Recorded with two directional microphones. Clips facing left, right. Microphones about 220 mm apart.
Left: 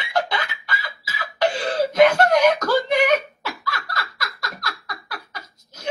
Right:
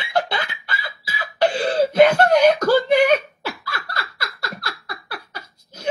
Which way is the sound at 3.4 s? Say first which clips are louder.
Right 1 dB; 30° right (ahead or behind).